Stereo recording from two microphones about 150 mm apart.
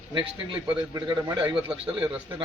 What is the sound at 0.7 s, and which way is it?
Speech, 25° right (ahead or behind).